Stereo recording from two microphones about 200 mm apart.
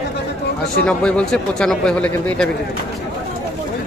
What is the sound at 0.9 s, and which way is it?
Speech, 5° left (ahead or behind).